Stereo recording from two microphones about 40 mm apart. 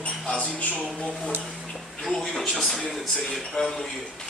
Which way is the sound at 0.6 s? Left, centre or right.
Left.